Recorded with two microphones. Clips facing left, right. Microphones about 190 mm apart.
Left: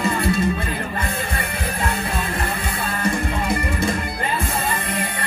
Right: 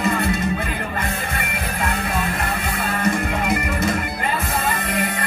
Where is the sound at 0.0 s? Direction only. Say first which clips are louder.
Left 1 dB; 30° left (ahead or behind).